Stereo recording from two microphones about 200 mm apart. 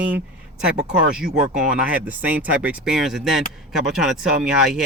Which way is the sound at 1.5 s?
5° right (ahead or behind).